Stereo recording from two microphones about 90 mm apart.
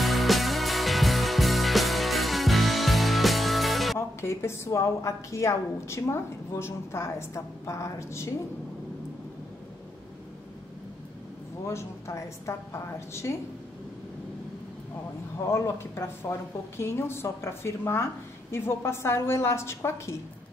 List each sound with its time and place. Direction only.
0.0 s music: centre (ahead or behind)
4.2 s a woman's voice: 30° left (ahead or behind)
11.6 s a woman's voice: 30° left (ahead or behind)
15.5 s a woman's voice: 30° left (ahead or behind)